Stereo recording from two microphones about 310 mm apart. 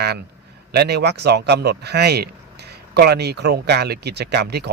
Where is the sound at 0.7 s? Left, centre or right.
Right.